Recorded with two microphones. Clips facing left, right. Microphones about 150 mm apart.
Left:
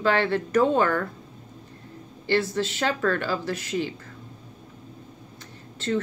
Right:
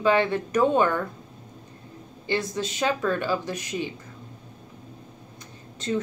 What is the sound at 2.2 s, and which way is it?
Speech, 15° right (ahead or behind).